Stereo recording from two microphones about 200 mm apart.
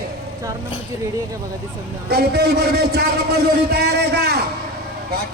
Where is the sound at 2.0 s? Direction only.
55° right (ahead or behind).